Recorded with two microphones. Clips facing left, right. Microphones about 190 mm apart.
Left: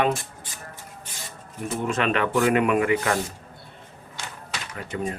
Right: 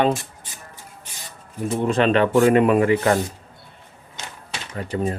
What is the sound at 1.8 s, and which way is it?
A man's voice, 35° right (ahead or behind).